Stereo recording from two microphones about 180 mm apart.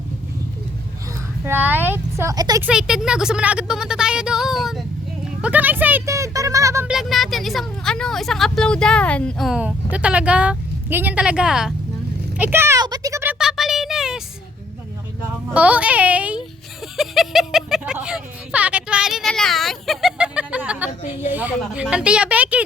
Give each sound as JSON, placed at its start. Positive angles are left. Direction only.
{"t": 1.5, "sound": "speech", "side_deg": -10}
{"t": 2.6, "sound": "speech", "side_deg": -5}
{"t": 5.4, "sound": "a sound", "side_deg": -10}
{"t": 6.8, "sound": "vehicle", "side_deg": 0}
{"t": 12.4, "sound": "a child's voice", "side_deg": -10}
{"t": 13.4, "sound": "a sound", "side_deg": 0}
{"t": 15.5, "sound": "speech", "side_deg": -10}
{"t": 17.0, "sound": "a sound", "side_deg": 0}
{"t": 21.0, "sound": "a woman's voice", "side_deg": 35}
{"t": 21.3, "sound": "speech", "side_deg": -10}